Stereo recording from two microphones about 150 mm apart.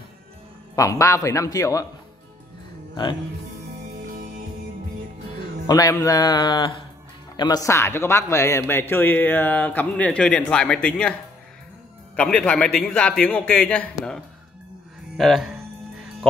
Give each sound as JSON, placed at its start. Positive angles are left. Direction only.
{"t": 0.7, "sound": "speech", "side_deg": 20}
{"t": 5.7, "sound": "speech", "side_deg": 25}
{"t": 12.2, "sound": "speech", "side_deg": 5}